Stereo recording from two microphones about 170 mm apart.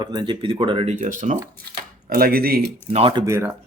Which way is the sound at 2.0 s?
60° right (ahead or behind).